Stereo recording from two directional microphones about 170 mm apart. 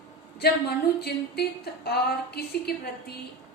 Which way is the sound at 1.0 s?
70° left (ahead or behind).